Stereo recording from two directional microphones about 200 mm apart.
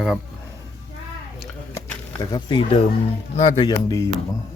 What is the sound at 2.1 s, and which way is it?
Speech, 20° left (ahead or behind).